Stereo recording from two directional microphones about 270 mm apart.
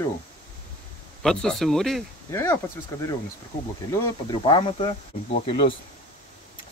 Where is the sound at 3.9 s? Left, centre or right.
Centre.